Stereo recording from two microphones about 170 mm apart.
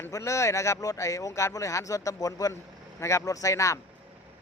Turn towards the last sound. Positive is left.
turn(degrees=20)  # may be behind; listen again after turning